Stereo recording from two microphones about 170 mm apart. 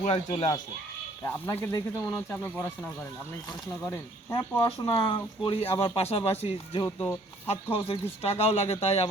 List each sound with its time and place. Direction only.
0.0 s speech: 45° left (ahead or behind)
1.2 s speech: 15° left (ahead or behind)
3.8 s speech: 15° left (ahead or behind); by 9.0 s 35° left (ahead or behind)